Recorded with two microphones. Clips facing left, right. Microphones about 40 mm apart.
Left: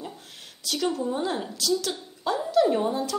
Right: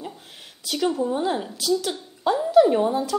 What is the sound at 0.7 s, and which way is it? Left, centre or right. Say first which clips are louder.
A woman's voice: right 3 dB; centre.